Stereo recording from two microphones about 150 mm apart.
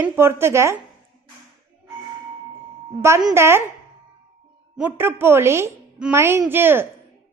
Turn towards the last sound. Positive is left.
turn(degrees=-15)  # may be behind; listen again after turning